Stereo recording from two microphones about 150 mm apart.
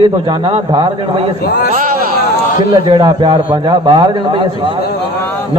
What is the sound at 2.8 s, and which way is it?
A man's voice, 35° right (ahead or behind).